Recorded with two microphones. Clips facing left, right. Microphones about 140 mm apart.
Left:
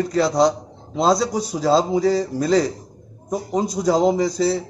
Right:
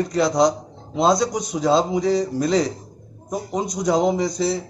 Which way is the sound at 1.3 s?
30° left (ahead or behind).